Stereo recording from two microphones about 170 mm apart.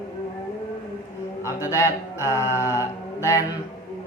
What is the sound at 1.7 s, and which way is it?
Speech, 15° left (ahead or behind).